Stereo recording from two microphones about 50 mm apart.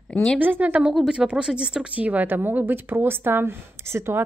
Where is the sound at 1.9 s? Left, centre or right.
Right.